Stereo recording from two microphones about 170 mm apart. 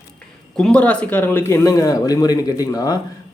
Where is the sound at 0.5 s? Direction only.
5° left (ahead or behind).